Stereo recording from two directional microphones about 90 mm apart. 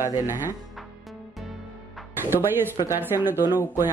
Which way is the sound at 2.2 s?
25° right (ahead or behind).